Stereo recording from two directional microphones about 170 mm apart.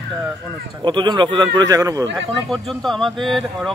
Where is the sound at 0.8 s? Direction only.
25° right (ahead or behind).